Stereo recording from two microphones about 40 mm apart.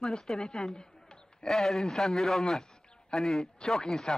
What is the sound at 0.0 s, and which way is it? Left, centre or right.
A man's voice, centre.